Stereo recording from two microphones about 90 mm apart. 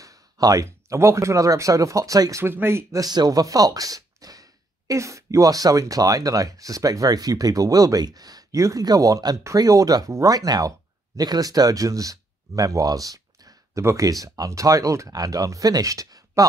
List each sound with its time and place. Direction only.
0.0 s a sound: 40° right (ahead or behind)
0.7 s speech: 30° right (ahead or behind)
2.4 s speech: 25° right (ahead or behind)
3.0 s speech: 50° right (ahead or behind)